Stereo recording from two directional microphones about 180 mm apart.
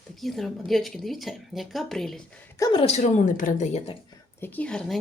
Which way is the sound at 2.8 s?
40° left (ahead or behind).